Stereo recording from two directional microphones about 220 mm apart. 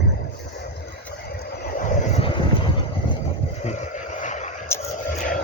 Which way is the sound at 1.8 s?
25° left (ahead or behind).